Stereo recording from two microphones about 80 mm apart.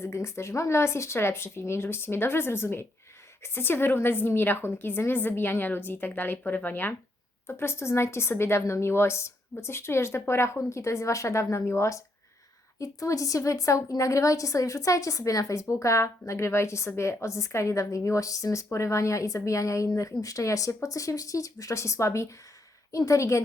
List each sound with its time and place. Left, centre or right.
0.0 s a woman's voice: left